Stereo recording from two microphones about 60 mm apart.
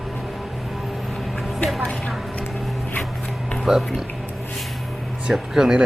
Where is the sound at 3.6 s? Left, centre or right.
Centre.